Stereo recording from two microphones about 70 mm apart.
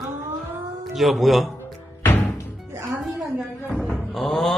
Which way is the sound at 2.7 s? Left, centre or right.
Right.